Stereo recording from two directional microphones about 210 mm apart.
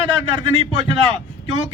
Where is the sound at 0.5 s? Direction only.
25° right (ahead or behind).